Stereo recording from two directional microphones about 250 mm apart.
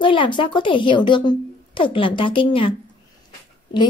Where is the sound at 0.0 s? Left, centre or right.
Centre.